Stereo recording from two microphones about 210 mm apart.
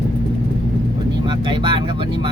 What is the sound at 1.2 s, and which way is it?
Vehicle, 20° right (ahead or behind).